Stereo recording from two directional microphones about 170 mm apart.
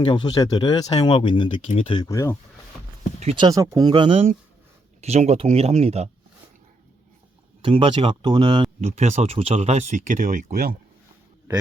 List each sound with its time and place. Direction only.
0.0 s speech: 25° left (ahead or behind)
2.0 s speech: 20° left (ahead or behind)
3.2 s speech: 30° right (ahead or behind)
7.6 s speech: 30° right (ahead or behind)
8.8 s speech: 40° right (ahead or behind); by 10.8 s 55° right (ahead or behind)